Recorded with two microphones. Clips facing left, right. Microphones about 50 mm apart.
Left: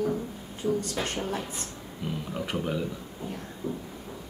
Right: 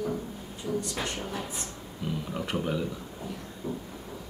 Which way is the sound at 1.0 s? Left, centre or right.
Left.